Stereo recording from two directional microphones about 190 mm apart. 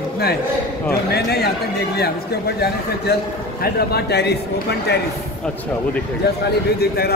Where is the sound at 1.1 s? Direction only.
55° left (ahead or behind).